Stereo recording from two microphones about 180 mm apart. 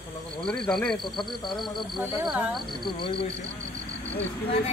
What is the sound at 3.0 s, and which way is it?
Speech, 30° left (ahead or behind).